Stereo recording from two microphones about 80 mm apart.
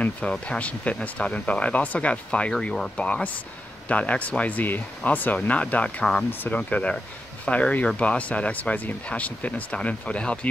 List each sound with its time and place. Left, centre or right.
0.0 s speech: centre